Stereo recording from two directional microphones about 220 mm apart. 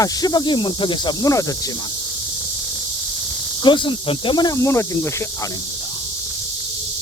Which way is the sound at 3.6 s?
20° left (ahead or behind).